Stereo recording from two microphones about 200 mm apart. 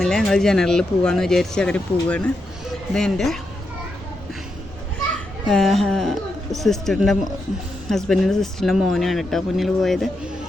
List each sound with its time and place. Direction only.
0.0 s speech: 5° left (ahead or behind)
5.5 s speech: centre (ahead or behind)